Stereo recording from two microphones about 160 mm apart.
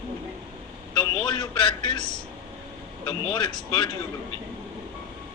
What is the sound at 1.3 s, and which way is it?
Speech, 30° left (ahead or behind).